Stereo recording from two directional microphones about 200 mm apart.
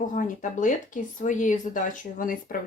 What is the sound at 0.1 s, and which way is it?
Speech, 40° left (ahead or behind).